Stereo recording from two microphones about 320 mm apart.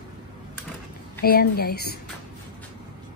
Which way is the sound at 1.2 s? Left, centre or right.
Left.